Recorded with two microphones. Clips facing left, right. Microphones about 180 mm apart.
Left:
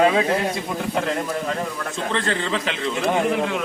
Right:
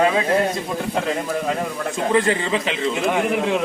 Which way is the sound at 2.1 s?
10° right (ahead or behind).